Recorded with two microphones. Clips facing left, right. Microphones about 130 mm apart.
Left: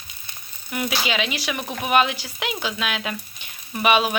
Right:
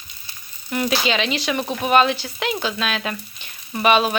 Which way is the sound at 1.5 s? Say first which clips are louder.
Right 5 dB; 20° right (ahead or behind).